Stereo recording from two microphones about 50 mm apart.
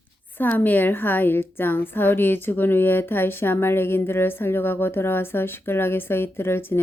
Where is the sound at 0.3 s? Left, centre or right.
Left.